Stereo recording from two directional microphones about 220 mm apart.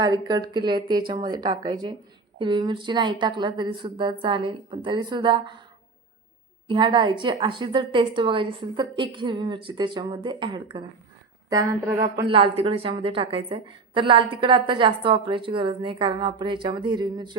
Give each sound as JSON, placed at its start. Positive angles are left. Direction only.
{"t": 0.0, "sound": "a woman's voice", "side_deg": -20}
{"t": 6.7, "sound": "a woman's voice", "side_deg": -20}